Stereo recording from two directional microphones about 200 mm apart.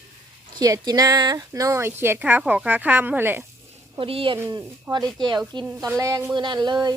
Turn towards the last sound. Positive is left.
turn(degrees=-20)  # may be behind; listen again after turning